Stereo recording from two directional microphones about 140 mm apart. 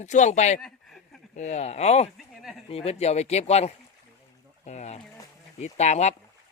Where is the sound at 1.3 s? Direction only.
55° left (ahead or behind).